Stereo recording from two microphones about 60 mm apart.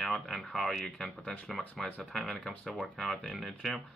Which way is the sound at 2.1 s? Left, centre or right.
Centre.